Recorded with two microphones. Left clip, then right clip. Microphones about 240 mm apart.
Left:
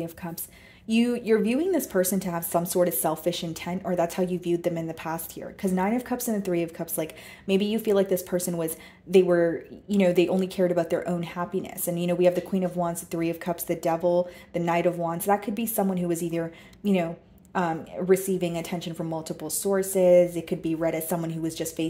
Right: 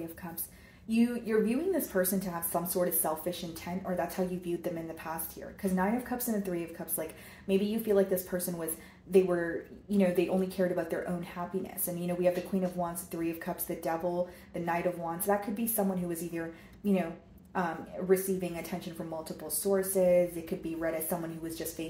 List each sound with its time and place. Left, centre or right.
0.8 s speech: left